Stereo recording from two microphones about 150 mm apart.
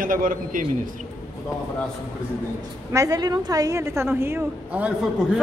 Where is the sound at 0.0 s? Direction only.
65° right (ahead or behind).